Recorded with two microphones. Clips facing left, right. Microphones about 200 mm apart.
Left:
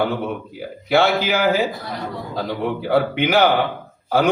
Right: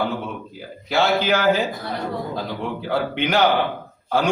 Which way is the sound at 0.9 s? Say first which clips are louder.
Left 4 dB; 60° left (ahead or behind).